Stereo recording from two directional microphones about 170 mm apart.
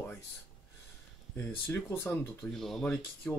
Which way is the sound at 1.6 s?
15° left (ahead or behind).